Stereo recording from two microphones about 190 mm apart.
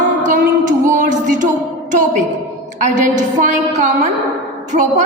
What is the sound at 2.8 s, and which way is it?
A woman's voice, 40° right (ahead or behind).